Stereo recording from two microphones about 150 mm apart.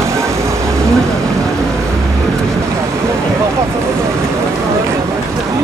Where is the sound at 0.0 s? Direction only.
20° right (ahead or behind).